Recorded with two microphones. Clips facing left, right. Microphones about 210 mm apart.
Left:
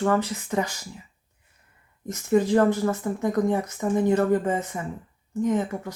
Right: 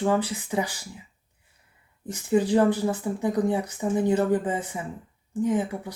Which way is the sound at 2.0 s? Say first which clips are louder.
Left 1 dB; 15° right (ahead or behind).